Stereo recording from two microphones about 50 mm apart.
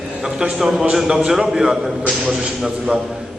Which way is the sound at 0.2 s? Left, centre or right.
Centre.